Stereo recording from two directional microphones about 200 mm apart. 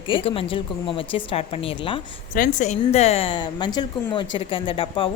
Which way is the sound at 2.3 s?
40° left (ahead or behind).